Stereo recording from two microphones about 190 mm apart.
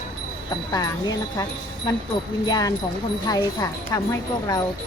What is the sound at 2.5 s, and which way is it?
Speech, 20° left (ahead or behind).